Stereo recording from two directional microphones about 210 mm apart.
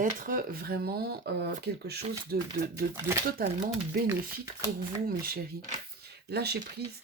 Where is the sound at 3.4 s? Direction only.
45° right (ahead or behind).